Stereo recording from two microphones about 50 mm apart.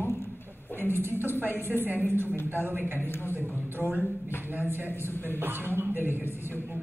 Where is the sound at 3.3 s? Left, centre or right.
Right.